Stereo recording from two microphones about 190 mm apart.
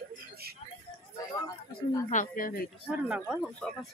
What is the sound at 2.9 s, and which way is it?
Speech, 5° right (ahead or behind).